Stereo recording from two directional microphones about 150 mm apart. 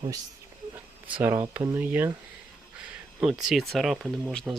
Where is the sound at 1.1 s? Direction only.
15° right (ahead or behind).